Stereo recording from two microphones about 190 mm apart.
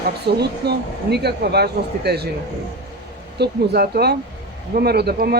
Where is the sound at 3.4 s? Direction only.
55° right (ahead or behind).